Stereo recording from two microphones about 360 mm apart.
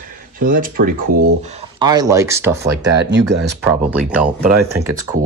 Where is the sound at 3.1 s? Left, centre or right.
Right.